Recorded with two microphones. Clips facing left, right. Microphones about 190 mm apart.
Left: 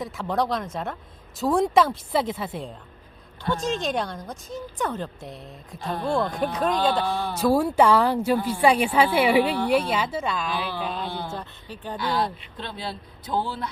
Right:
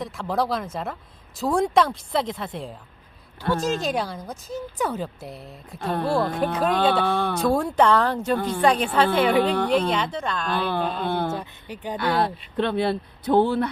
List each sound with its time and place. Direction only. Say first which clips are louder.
0.0 s a woman's voice: even; centre (ahead or behind)
5.8 s speech: right 4 dB; 55° right (ahead or behind)
6.1 s a woman's voice: right 1 dB; 5° right (ahead or behind)
7.0 s speech: right 4 dB; 60° right (ahead or behind)
7.4 s a woman's voice: left 2 dB; 5° left (ahead or behind)
10.5 s speech: right 5 dB; 55° right (ahead or behind)
11.0 s a sound: right 7 dB; 55° right (ahead or behind)
11.3 s a sound: right 3 dB; 15° right (ahead or behind)
11.9 s speech: right 3 dB; 60° right (ahead or behind)